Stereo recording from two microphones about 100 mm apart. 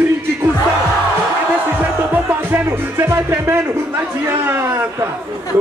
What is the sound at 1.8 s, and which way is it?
Music, 20° right (ahead or behind).